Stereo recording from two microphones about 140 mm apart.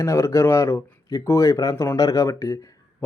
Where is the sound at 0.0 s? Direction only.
20° left (ahead or behind).